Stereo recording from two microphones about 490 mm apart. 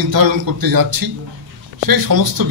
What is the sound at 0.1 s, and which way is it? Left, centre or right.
Speech, right.